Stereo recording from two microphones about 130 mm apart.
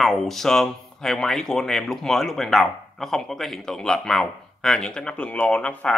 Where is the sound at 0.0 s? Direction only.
Centre (ahead or behind).